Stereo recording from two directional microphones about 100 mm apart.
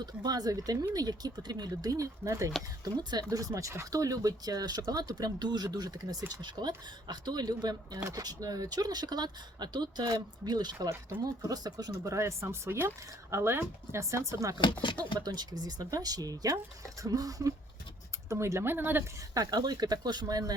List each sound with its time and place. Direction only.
0.0 s speech: 40° right (ahead or behind)
2.8 s speech: 45° right (ahead or behind)
3.2 s speech: 35° right (ahead or behind)
10.8 s speech: 35° right (ahead or behind)
14.6 s speech: 50° left (ahead or behind)
15.2 s speech: 40° right (ahead or behind); by 19.0 s 20° right (ahead or behind)
19.3 s speech: 40° right (ahead or behind)